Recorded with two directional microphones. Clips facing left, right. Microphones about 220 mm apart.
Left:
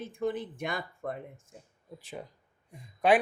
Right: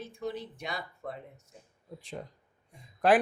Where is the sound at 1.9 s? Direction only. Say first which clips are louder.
Right 1 dB; 5° left (ahead or behind).